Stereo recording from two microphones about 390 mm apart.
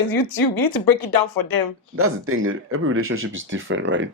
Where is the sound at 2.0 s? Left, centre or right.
Right.